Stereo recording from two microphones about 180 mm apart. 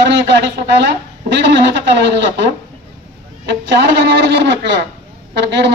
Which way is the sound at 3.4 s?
80° right.